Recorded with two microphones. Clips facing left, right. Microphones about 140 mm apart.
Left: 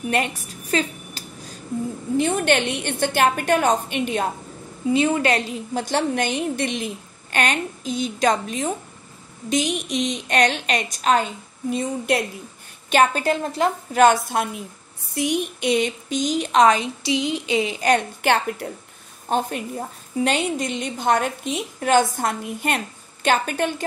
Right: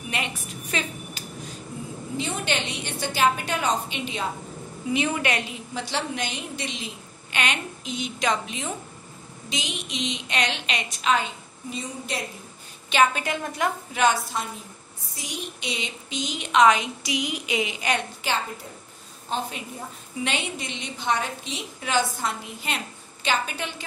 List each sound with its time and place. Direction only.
0.1 s a woman's voice: 40° left (ahead or behind)
2.1 s a woman's voice: 55° left (ahead or behind)
4.9 s a woman's voice: 35° left (ahead or behind); by 6.9 s 55° left (ahead or behind)
7.3 s a woman's voice: 40° left (ahead or behind)
11.7 s a woman's voice: 60° left (ahead or behind)
12.9 s a woman's voice: 35° left (ahead or behind)
13.9 s a woman's voice: 55° left (ahead or behind); by 18.0 s 40° left (ahead or behind)
18.2 s a woman's voice: 60° left (ahead or behind)
19.2 s a woman's voice: 50° left (ahead or behind)